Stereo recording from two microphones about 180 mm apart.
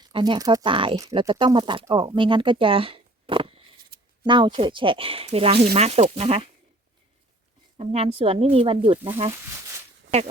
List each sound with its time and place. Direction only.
0.0 s speech: 25° right (ahead or behind)
0.9 s speech: 20° right (ahead or behind)
3.8 s a sound: 55° right (ahead or behind)
4.3 s speech: 25° right (ahead or behind)
7.8 s speech: 35° right (ahead or behind)